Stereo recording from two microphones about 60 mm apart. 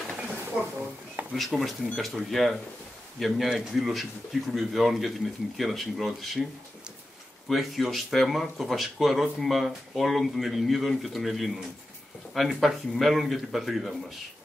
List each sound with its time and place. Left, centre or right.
0.2 s a sound: right
1.3 s speech: centre
7.4 s speech: centre